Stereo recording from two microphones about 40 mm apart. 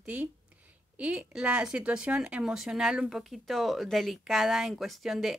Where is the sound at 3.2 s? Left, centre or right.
Centre.